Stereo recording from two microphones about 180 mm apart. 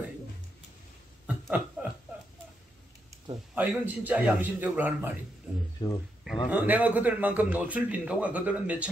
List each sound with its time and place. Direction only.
1.2 s a sound: 10° right (ahead or behind)
3.5 s a man's voice: 10° right (ahead or behind)
5.8 s speech: 30° left (ahead or behind)
6.2 s a man's voice: centre (ahead or behind)